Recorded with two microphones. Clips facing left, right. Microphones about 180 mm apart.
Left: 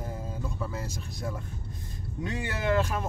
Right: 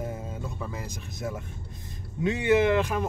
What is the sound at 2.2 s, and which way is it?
Speech, 20° right (ahead or behind).